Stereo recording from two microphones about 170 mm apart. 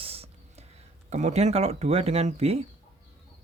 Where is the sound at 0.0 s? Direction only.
35° right (ahead or behind).